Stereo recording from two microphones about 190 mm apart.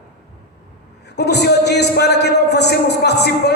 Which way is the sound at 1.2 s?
60° left (ahead or behind).